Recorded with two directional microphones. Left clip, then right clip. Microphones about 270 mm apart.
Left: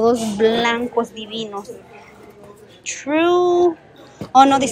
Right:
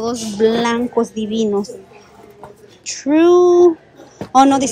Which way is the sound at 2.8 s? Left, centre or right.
Centre.